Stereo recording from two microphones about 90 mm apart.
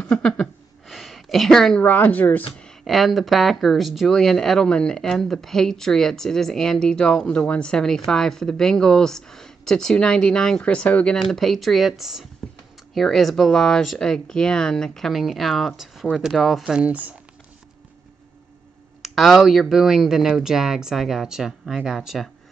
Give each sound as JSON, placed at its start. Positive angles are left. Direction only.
{"t": 0.0, "sound": "gasp", "side_deg": 10}
{"t": 0.8, "sound": "a sound", "side_deg": 0}
{"t": 1.8, "sound": "speech", "side_deg": 20}
{"t": 2.6, "sound": "speech", "side_deg": 0}
{"t": 19.0, "sound": "speech", "side_deg": 0}